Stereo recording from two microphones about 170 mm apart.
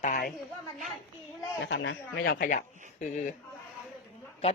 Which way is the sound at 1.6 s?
90° left.